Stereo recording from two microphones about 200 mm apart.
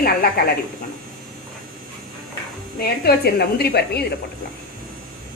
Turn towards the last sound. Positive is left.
turn(degrees=50)  # may be behind; listen again after turning